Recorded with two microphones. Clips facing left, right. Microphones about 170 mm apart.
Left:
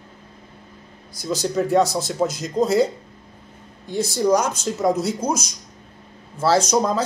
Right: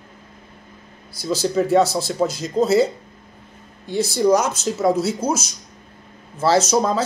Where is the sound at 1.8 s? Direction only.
15° left (ahead or behind).